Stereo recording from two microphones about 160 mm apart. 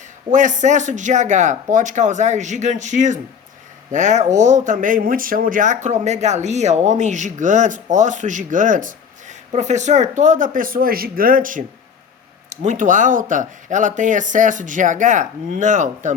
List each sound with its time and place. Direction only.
0.3 s speech: 50° right (ahead or behind)